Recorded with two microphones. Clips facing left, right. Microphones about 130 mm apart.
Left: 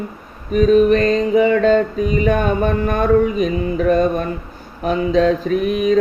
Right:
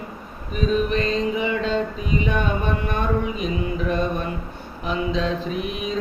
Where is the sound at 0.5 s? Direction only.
50° left (ahead or behind).